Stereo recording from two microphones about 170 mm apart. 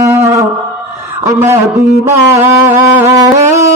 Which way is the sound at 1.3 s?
15° right (ahead or behind).